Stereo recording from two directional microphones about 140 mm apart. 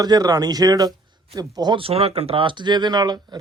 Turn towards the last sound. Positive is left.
turn(degrees=-30)  # may be behind; listen again after turning